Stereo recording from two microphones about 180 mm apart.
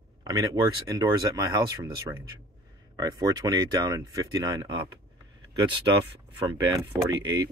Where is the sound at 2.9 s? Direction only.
20° right (ahead or behind).